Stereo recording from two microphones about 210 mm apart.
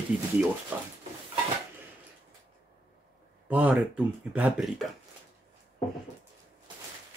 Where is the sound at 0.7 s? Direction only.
10° right (ahead or behind).